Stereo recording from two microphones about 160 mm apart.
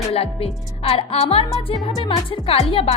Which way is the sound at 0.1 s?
40° left (ahead or behind).